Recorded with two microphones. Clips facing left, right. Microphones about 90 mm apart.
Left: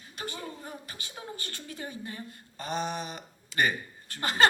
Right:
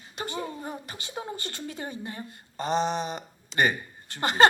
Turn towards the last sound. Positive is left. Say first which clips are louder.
# right 4 dB
turn(degrees=-25)  # may be behind; listen again after turning